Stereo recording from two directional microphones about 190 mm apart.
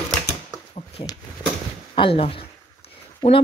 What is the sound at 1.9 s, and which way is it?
Speech, 30° left (ahead or behind).